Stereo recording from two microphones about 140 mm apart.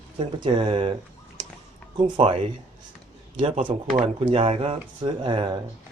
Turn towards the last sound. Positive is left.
turn(degrees=-35)  # may be behind; listen again after turning